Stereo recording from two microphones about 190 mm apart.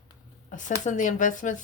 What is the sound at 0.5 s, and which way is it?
A woman's voice, 40° left (ahead or behind).